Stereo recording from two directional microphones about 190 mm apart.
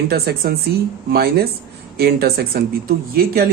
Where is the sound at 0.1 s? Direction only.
55° right (ahead or behind).